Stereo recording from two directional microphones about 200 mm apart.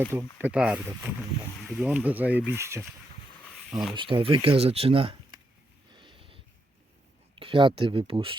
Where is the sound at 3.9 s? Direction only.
25° right (ahead or behind).